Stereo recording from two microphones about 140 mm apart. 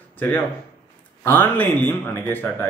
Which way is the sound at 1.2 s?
15° left (ahead or behind).